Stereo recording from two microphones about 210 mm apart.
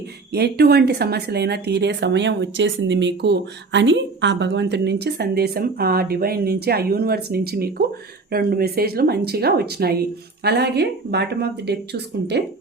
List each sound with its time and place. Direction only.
0.3 s speech: 50° right (ahead or behind)